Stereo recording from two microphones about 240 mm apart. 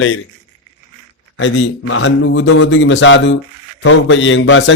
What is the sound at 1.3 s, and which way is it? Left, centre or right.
A man's voice, left.